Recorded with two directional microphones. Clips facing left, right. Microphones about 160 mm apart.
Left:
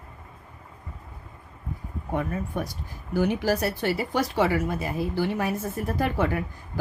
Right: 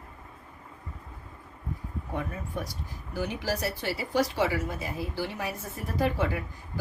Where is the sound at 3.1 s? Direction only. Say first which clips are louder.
Left 7 dB; 55° left (ahead or behind).